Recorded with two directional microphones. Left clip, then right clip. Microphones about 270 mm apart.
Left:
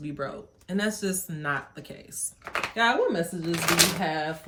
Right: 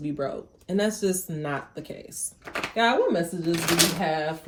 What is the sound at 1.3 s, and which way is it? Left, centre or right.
Speech, left.